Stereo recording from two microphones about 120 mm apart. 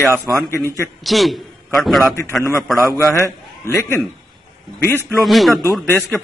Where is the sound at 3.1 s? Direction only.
25° left (ahead or behind).